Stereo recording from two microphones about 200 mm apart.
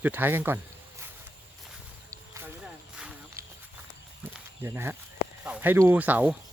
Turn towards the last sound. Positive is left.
turn(degrees=-10)  # may be behind; listen again after turning